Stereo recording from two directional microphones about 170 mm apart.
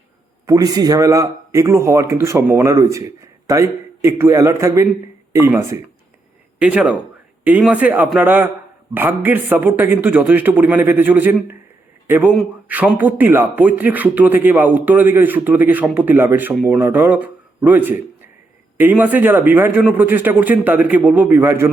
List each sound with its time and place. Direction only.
0.4 s a man's voice: 20° right (ahead or behind)